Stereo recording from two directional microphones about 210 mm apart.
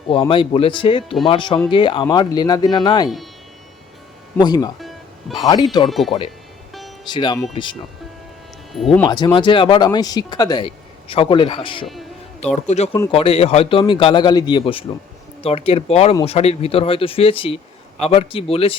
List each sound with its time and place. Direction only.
0.1 s a man's voice: 25° left (ahead or behind)
4.4 s a man's voice: 20° left (ahead or behind)
4.8 s music: centre (ahead or behind)
5.4 s a man's voice: 20° left (ahead or behind)
5.9 s speech: centre (ahead or behind)
7.0 s a man's voice: 20° left (ahead or behind)
9.0 s a man's voice: 20° left (ahead or behind)